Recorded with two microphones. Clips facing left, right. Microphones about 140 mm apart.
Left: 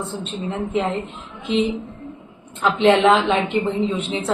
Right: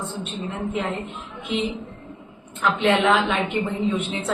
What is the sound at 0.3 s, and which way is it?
Speech, 30° left (ahead or behind).